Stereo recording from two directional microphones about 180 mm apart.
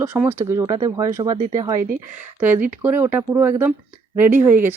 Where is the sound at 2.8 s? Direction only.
10° right (ahead or behind).